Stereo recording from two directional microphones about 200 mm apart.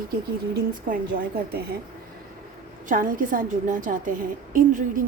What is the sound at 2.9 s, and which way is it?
A woman's voice, 45° right (ahead or behind).